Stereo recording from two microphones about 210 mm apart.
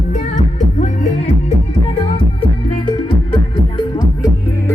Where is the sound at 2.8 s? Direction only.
25° left (ahead or behind).